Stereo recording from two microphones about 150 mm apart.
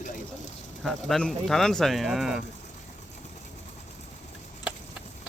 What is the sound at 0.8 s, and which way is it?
Speech, 5° left (ahead or behind).